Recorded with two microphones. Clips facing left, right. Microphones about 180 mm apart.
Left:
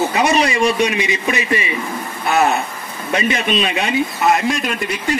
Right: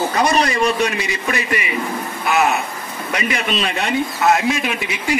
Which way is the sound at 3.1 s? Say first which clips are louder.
Left 4 dB; 25° left (ahead or behind).